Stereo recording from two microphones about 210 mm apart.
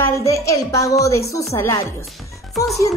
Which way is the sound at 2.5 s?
Centre (ahead or behind).